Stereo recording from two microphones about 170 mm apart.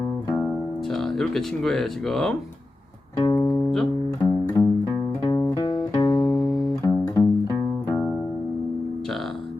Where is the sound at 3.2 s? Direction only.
20° left (ahead or behind).